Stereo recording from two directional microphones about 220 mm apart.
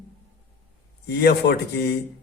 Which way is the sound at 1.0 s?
50° left (ahead or behind).